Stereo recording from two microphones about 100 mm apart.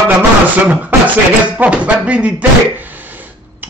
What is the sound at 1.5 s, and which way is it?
Speech, 15° right (ahead or behind).